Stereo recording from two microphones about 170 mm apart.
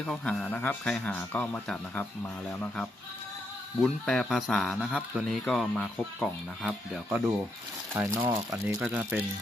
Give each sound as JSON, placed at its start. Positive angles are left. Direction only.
{"t": 0.0, "sound": "speech", "side_deg": 5}
{"t": 7.9, "sound": "speech", "side_deg": -15}
{"t": 8.7, "sound": "speech", "side_deg": -5}